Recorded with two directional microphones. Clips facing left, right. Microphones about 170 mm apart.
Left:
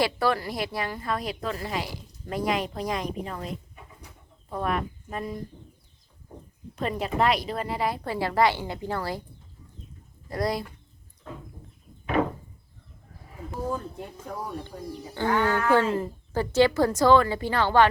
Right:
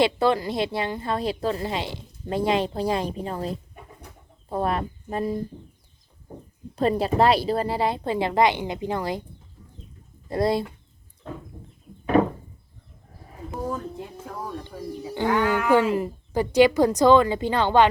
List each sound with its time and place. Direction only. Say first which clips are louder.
0.0 s speech: right 4 dB; 20° right (ahead or behind)
6.7 s speech: right 6 dB; 35° right (ahead or behind)
10.2 s speech: right 5 dB; 25° right (ahead or behind)
15.0 s speech: right 2 dB; 15° right (ahead or behind)